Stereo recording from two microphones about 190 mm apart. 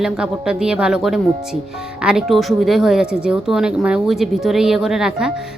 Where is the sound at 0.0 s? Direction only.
5° right (ahead or behind).